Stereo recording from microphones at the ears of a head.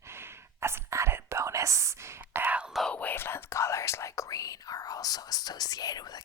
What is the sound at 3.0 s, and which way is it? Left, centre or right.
Whispering, left.